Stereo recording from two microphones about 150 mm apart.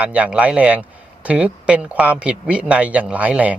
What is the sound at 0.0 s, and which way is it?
A man's voice, 10° right (ahead or behind).